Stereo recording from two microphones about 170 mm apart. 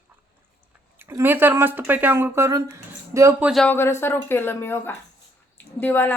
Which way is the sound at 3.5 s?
5° left (ahead or behind).